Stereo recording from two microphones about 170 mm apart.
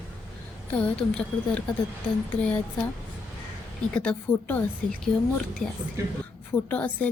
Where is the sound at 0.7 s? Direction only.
10° left (ahead or behind).